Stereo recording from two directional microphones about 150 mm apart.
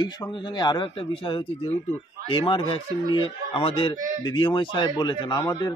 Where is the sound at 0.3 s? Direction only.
30° left (ahead or behind).